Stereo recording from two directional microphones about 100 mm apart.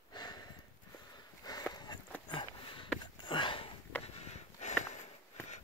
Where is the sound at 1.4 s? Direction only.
40° left (ahead or behind).